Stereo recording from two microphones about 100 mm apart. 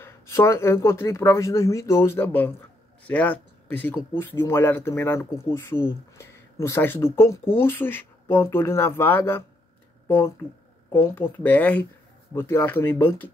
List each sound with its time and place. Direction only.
0.0 s speech: 25° left (ahead or behind)
12.4 s speech: 25° left (ahead or behind)